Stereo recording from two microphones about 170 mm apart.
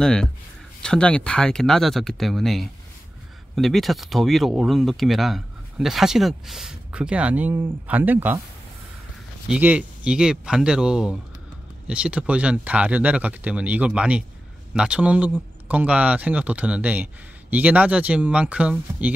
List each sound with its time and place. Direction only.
0.0 s speech: 5° left (ahead or behind)
9.5 s speech: 10° right (ahead or behind)